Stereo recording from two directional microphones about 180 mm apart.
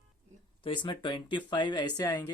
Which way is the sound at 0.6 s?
25° left (ahead or behind).